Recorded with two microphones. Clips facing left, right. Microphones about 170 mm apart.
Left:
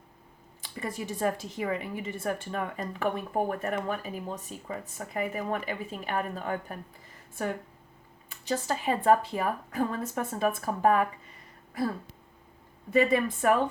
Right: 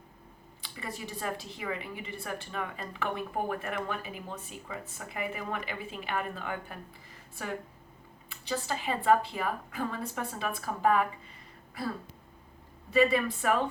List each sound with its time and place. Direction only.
0.6 s a woman's voice: 50° left (ahead or behind)
8.3 s a woman's voice: 45° left (ahead or behind)
12.9 s a woman's voice: 50° left (ahead or behind)